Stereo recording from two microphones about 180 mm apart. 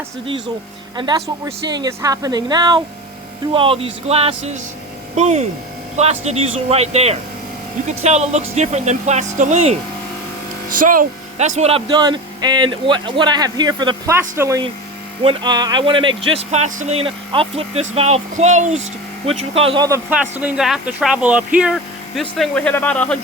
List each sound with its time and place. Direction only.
1.0 s speech: 30° right (ahead or behind)
10.8 s speech: 50° right (ahead or behind); by 14.6 s 15° right (ahead or behind)
15.2 s speech: 25° right (ahead or behind)
19.8 s speech: 10° right (ahead or behind); by 23.1 s 5° left (ahead or behind)